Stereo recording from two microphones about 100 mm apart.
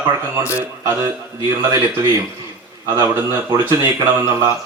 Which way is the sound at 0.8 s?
30° right (ahead or behind).